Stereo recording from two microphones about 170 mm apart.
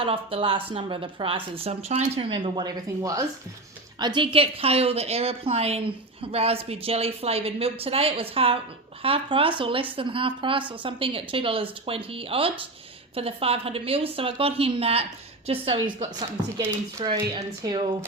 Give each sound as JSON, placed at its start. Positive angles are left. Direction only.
{"t": 0.0, "sound": "a woman's voice", "side_deg": -35}